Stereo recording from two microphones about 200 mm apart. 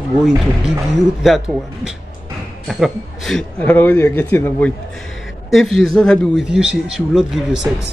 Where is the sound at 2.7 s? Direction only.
Centre (ahead or behind).